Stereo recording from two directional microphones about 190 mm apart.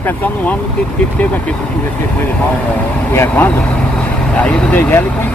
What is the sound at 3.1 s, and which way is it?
Speech, 10° left (ahead or behind).